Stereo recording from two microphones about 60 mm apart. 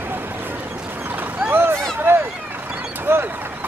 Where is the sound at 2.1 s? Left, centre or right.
Right.